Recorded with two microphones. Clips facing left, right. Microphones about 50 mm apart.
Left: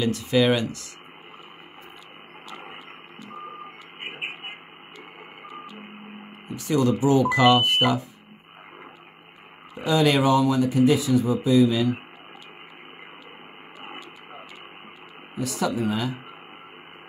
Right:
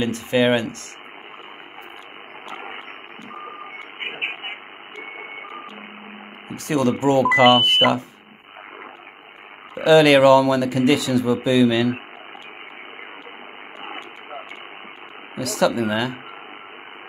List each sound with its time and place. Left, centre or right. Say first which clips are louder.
0.0 s speech: right 2 dB; right
2.5 s radio: right 6 dB; right
3.3 s reversing beeps: right 3 dB; right
6.5 s speech: right 2 dB; right
9.8 s speech: right 8 dB; right
15.3 s speech: right 6 dB; right